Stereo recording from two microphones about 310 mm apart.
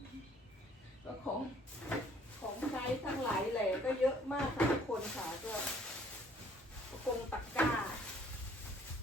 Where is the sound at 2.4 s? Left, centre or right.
Centre.